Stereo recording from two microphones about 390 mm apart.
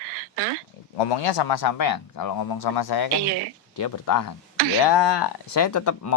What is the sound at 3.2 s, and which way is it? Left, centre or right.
Speech, right.